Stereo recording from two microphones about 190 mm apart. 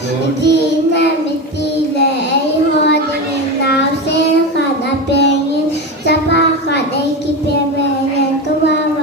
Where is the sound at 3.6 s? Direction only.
65° left (ahead or behind).